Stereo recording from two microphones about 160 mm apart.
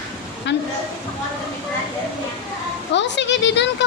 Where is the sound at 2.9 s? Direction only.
90° left.